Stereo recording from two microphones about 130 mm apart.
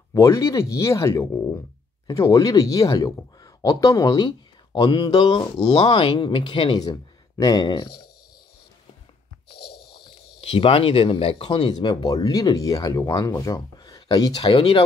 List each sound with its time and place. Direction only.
0.1 s speech: 25° left (ahead or behind)
10.0 s speech: 45° left (ahead or behind)
14.4 s speech: 50° left (ahead or behind)